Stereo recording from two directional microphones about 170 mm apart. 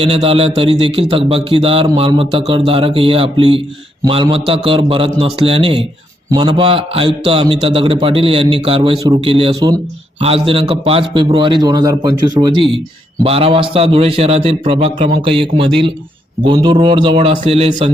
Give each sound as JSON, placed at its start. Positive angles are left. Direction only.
{"t": 0.0, "sound": "a man's voice", "side_deg": -35}